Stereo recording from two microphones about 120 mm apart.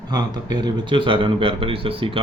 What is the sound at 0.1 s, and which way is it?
A man's voice, 35° right (ahead or behind).